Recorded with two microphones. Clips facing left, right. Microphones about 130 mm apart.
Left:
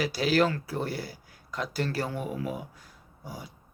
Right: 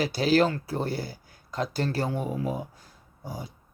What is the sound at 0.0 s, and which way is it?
Speech, 30° right (ahead or behind).